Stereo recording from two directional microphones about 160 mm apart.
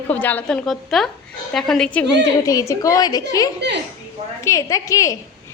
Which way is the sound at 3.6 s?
90° right.